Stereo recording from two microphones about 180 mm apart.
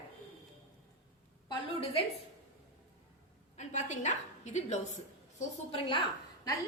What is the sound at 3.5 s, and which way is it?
A woman's voice, 40° left (ahead or behind).